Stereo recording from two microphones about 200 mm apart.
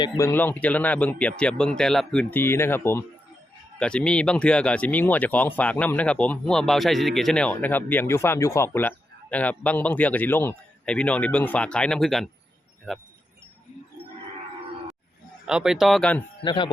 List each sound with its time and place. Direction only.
0.0 s speech: 15° left (ahead or behind)
15.4 s speech: 5° right (ahead or behind)
16.4 s speech: 25° left (ahead or behind)